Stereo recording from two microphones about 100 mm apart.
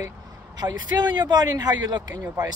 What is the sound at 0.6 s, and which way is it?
Speech, 45° right (ahead or behind).